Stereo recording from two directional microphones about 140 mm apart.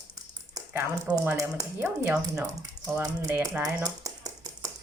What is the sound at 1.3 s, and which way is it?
Speech, 20° right (ahead or behind).